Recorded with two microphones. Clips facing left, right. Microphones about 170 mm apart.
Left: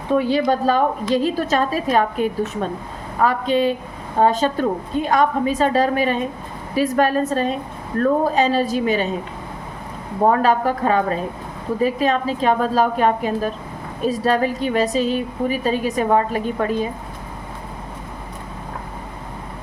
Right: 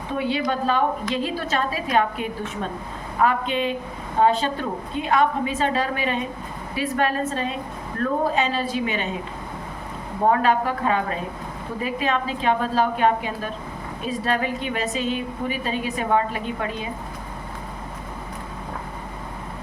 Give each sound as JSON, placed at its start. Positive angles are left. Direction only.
{"t": 0.1, "sound": "a woman's voice", "side_deg": 40}
{"t": 10.4, "sound": "a woman's voice", "side_deg": 40}